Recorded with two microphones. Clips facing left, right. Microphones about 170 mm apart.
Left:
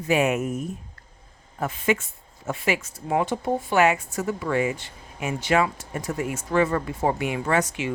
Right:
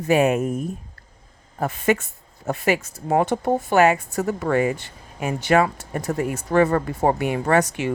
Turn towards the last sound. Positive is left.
turn(degrees=-45)  # may be behind; listen again after turning